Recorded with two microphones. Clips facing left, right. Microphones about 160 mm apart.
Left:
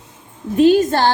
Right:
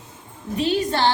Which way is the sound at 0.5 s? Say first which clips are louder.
Left 9 dB; 50° left (ahead or behind).